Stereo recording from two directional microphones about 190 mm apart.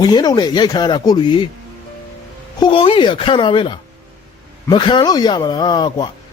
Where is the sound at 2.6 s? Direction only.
30° left (ahead or behind).